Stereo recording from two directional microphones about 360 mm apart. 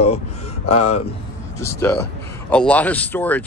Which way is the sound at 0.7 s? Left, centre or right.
Centre.